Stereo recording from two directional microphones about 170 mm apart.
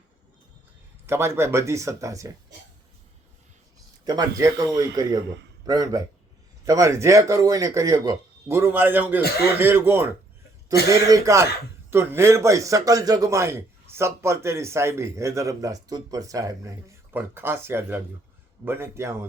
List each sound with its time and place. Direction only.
1.0 s a man's voice: 15° right (ahead or behind)
4.0 s a man's voice: 20° right (ahead or behind)
9.2 s speech: 70° left (ahead or behind)
9.6 s a man's voice: 15° right (ahead or behind)